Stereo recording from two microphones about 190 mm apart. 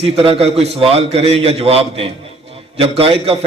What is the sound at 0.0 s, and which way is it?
A man's voice, 30° right (ahead or behind).